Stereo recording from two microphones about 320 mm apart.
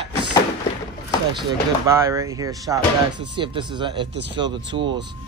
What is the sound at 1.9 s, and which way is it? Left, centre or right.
Speech, centre.